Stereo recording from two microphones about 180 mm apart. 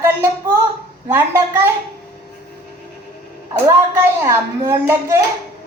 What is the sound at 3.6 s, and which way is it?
A woman's voice, 15° right (ahead or behind).